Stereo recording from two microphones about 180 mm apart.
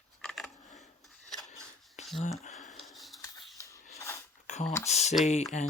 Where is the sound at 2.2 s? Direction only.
40° left (ahead or behind).